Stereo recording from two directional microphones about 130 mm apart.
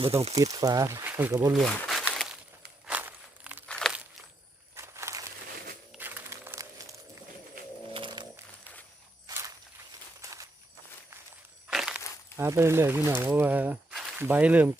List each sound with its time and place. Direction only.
0.0 s speech: 50° right (ahead or behind)
0.3 s speech: 30° right (ahead or behind)
1.5 s speech: centre (ahead or behind)
2.8 s walk: 15° right (ahead or behind)
3.7 s walk: 5° left (ahead or behind)
4.7 s walk: 20° right (ahead or behind)
6.0 s a sound: 15° right (ahead or behind)
7.9 s a sound: 35° right (ahead or behind)
9.2 s walk: 25° right (ahead or behind)
11.7 s walk: 5° right (ahead or behind)
12.4 s speech: 20° right (ahead or behind)